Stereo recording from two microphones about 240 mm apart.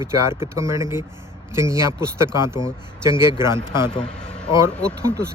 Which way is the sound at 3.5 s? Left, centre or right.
Centre.